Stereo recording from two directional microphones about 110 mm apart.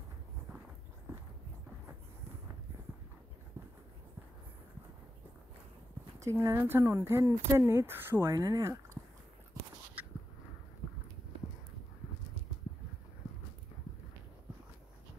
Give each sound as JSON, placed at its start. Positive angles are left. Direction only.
{"t": 6.1, "sound": "speech", "side_deg": -25}